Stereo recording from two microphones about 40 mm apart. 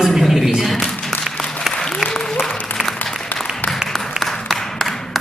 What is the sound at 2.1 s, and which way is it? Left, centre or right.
Applause, centre.